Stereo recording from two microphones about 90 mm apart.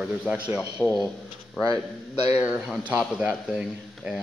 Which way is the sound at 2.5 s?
10° right (ahead or behind).